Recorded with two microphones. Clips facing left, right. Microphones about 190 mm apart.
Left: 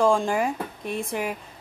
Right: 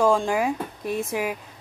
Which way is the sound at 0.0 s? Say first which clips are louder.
Right 1 dB; centre (ahead or behind).